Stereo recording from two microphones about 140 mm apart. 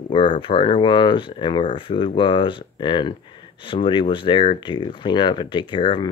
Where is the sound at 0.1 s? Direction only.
35° left (ahead or behind).